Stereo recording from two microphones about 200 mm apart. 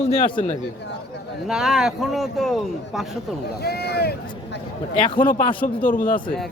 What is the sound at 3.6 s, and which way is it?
Speech, 55° left (ahead or behind).